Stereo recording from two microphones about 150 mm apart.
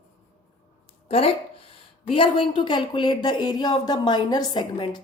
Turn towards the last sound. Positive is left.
turn(degrees=30)  # may be behind; listen again after turning